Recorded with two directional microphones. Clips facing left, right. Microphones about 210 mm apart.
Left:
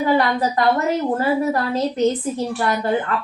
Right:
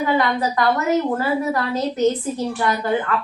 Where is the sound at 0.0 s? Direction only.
30° left (ahead or behind).